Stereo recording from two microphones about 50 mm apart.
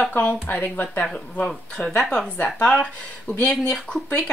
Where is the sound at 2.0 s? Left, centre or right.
Centre.